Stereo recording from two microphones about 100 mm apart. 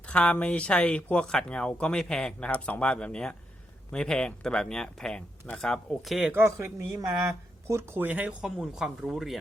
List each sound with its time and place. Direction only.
0.1 s speech: 10° left (ahead or behind)
6.3 s speech: 25° right (ahead or behind); by 9.4 s 5° right (ahead or behind)